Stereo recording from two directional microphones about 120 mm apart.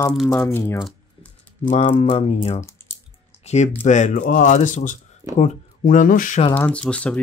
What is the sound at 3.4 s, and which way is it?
Speech, 70° left (ahead or behind).